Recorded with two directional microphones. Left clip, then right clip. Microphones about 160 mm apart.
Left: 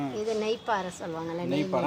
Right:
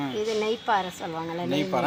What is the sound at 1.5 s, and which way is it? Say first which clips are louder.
Speech: right 2 dB; 10° right (ahead or behind).